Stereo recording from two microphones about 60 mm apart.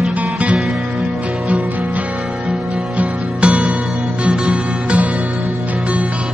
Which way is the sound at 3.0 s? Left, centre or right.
Centre.